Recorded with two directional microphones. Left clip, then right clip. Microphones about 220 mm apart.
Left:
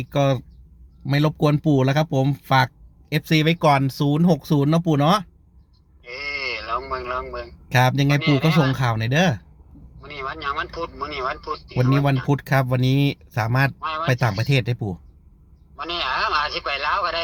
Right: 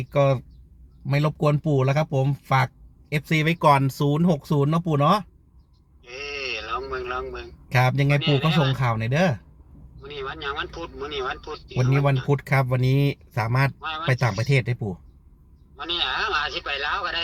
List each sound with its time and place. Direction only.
0.1 s speech: 20° left (ahead or behind)
6.1 s a sound: 10° left (ahead or behind)
8.2 s speech: 10° left (ahead or behind)
8.8 s speech: 20° left (ahead or behind)
10.0 s speech: 10° left (ahead or behind)